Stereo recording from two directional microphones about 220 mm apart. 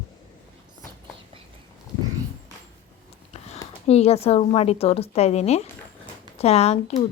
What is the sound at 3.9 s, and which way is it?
A woman's voice, 30° left (ahead or behind).